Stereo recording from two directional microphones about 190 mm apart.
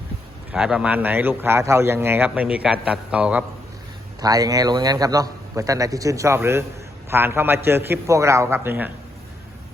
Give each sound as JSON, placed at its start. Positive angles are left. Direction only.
{"t": 0.5, "sound": "a man's voice", "side_deg": -5}
{"t": 4.2, "sound": "a man's voice", "side_deg": -20}